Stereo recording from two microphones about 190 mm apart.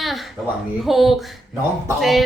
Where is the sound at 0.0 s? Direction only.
Centre (ahead or behind).